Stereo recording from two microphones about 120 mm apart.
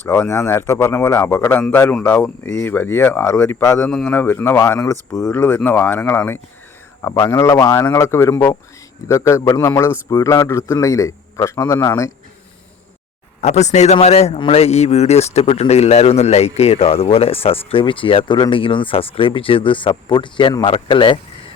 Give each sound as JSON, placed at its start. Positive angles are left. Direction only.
{"t": 0.1, "sound": "a man's voice", "side_deg": 25}
{"t": 2.0, "sound": "a man's voice", "side_deg": 5}
{"t": 3.8, "sound": "a man's voice", "side_deg": 10}
{"t": 13.4, "sound": "a man's voice", "side_deg": 70}